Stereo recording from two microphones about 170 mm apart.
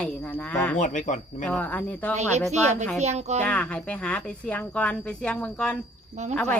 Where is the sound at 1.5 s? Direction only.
10° left (ahead or behind).